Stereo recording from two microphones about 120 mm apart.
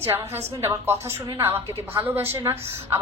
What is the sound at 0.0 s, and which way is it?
A woman's voice, 20° right (ahead or behind).